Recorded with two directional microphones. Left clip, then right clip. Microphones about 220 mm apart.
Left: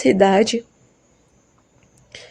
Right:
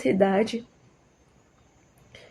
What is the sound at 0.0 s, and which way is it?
Speech, 45° left (ahead or behind).